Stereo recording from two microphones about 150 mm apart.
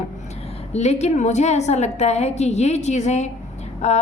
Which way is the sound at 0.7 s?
50° left (ahead or behind).